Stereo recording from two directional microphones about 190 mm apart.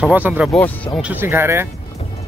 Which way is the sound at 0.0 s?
10° right (ahead or behind).